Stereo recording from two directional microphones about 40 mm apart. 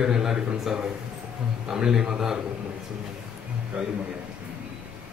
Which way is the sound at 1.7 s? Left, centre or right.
Centre.